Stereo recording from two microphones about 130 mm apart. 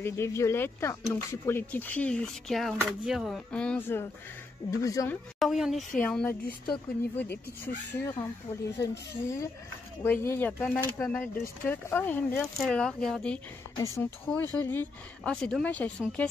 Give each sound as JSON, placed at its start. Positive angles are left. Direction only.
{"t": 0.0, "sound": "speech", "side_deg": 20}
{"t": 5.4, "sound": "speech", "side_deg": 0}
{"t": 12.5, "sound": "speech", "side_deg": 5}
{"t": 13.7, "sound": "speech", "side_deg": 25}